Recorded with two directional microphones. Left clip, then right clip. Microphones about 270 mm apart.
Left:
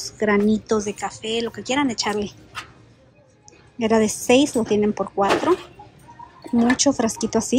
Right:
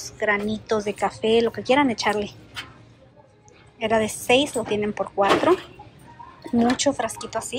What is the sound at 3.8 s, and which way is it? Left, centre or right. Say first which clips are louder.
Speech: left 2 dB; centre.